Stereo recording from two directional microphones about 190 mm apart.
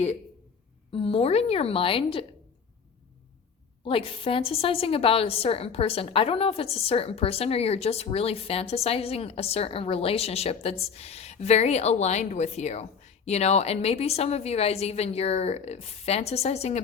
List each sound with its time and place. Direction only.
0.9 s a woman's voice: 30° left (ahead or behind)
3.8 s a woman's voice: 30° left (ahead or behind)